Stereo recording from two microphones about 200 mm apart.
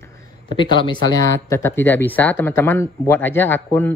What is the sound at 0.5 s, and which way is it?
Speech, 25° left (ahead or behind).